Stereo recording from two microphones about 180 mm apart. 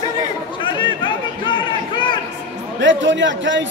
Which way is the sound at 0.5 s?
25° left (ahead or behind).